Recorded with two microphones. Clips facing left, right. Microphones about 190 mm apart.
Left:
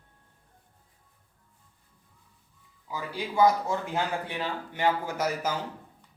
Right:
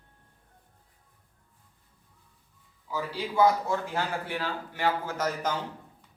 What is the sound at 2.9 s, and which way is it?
A man's voice, 15° left (ahead or behind).